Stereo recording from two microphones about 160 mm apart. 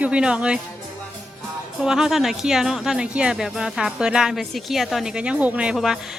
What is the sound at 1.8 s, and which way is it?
Speech, 5° right (ahead or behind).